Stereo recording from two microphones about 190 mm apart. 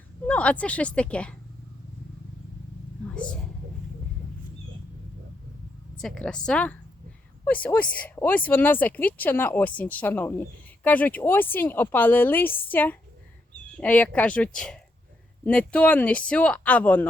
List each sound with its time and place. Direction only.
0.3 s speech: 5° left (ahead or behind)
3.1 s a sound: 5° left (ahead or behind)
6.0 s speech: 5° left (ahead or behind)